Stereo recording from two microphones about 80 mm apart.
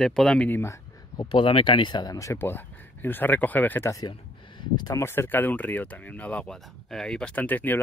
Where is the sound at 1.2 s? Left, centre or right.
Left.